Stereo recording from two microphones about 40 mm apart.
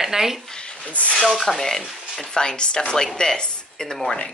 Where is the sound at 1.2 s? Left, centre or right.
Centre.